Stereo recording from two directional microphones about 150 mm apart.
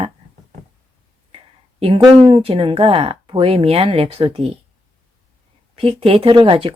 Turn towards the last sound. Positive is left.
turn(degrees=-35)  # may be behind; listen again after turning